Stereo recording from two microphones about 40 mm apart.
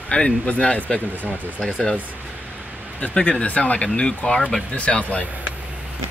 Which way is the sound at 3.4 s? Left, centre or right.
Left.